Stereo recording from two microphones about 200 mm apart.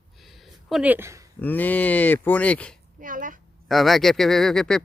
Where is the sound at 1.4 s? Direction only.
10° left (ahead or behind).